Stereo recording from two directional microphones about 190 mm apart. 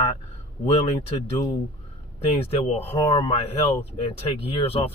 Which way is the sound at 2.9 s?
30° left (ahead or behind).